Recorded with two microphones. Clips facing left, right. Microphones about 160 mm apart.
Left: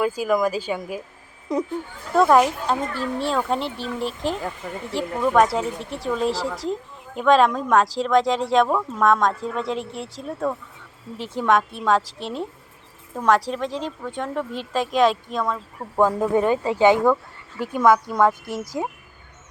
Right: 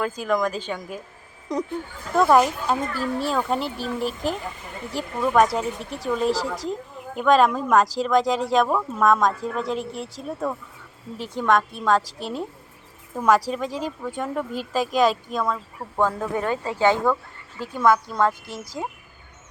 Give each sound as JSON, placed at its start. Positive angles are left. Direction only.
{"t": 0.0, "sound": "speech", "side_deg": 5}
{"t": 16.0, "sound": "speech", "side_deg": 15}